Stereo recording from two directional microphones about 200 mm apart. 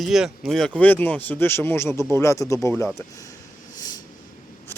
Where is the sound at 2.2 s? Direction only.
15° left (ahead or behind).